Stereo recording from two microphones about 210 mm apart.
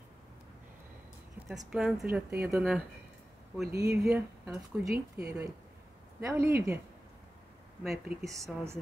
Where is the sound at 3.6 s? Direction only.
50° right (ahead or behind).